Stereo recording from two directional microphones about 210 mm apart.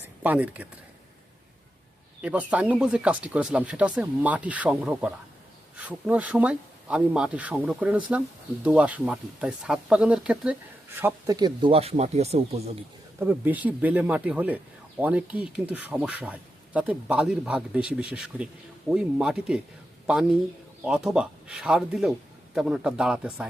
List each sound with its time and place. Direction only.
0.2 s speech: 10° right (ahead or behind)
2.2 s speech: 5° right (ahead or behind)
11.0 s speech: 20° right (ahead or behind)
13.1 s speech: 10° right (ahead or behind)
20.8 s speech: 5° right (ahead or behind)